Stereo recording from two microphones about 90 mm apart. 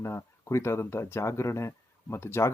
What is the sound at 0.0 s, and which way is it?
Speech, 30° left (ahead or behind).